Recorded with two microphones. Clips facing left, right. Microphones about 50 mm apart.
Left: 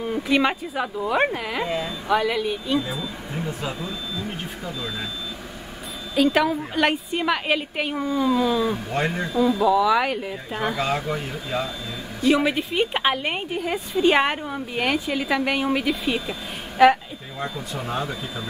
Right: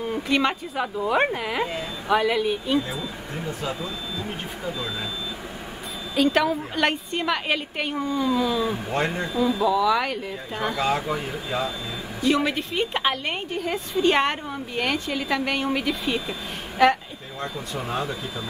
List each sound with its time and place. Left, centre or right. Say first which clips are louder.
0.0 s speech: left 2 dB; centre
3.4 s a woman's voice: right 2 dB; centre
6.1 s a woman's voice: left 1 dB; centre